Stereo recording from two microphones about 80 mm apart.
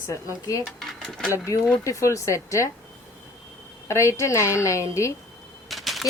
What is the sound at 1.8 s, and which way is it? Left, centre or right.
Speech, left.